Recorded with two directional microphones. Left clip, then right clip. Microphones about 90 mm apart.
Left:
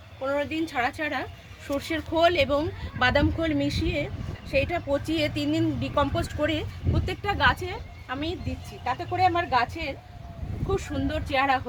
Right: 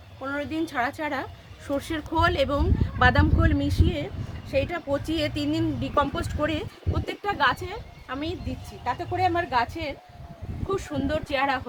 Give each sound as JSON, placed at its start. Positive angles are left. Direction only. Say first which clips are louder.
{"t": 0.3, "sound": "a woman's voice", "louder": "right 1 dB", "side_deg": -45}
{"t": 9.3, "sound": "a woman's voice", "louder": "even", "side_deg": -45}